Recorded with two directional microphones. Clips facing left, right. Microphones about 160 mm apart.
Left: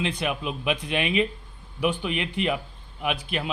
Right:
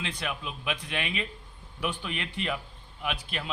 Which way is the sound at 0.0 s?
20° left (ahead or behind).